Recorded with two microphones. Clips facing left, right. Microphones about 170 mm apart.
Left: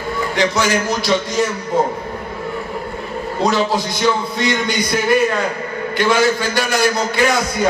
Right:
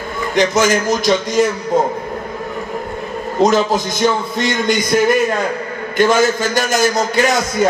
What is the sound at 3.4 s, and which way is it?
A man's voice, 45° right (ahead or behind).